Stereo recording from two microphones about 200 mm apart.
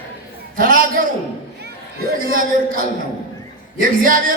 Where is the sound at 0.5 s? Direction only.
45° right (ahead or behind).